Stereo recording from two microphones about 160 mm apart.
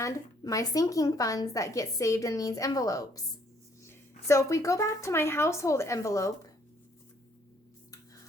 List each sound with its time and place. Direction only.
0.0 s a woman's voice: 20° left (ahead or behind)